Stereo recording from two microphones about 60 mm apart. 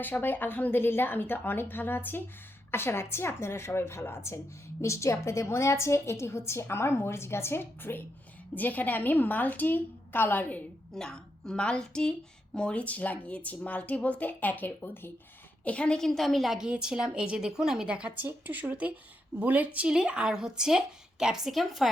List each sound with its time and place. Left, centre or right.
0.0 s a woman's voice: left
10.9 s speech: centre; by 15.1 s left
15.6 s speech: left
16.0 s a woman's voice: centre
16.6 s a woman's voice: centre
18.2 s speech: right
19.9 s a woman's voice: centre